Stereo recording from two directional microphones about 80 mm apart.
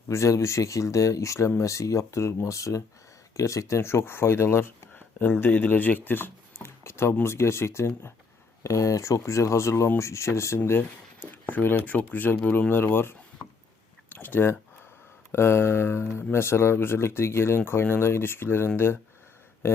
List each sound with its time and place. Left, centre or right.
0.1 s speech: left
8.6 s speech: left
10.6 s speech: left